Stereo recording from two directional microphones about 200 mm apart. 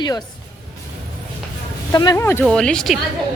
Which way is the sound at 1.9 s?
20° left (ahead or behind).